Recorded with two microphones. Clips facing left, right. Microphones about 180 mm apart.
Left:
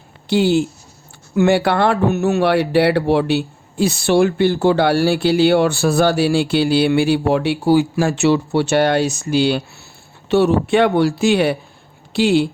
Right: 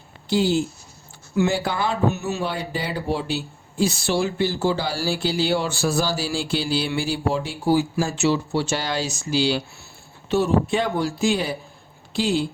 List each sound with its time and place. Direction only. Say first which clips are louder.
0.3 s speech: left 5 dB; 70° left (ahead or behind)
10.2 s speech: left 5 dB; 70° left (ahead or behind)